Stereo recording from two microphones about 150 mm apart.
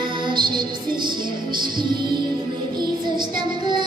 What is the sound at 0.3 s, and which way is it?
Music, 30° right (ahead or behind).